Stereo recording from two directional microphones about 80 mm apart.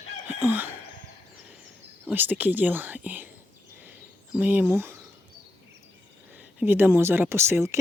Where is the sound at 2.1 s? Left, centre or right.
Right.